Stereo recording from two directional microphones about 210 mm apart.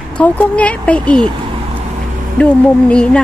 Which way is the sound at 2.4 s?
5° left (ahead or behind).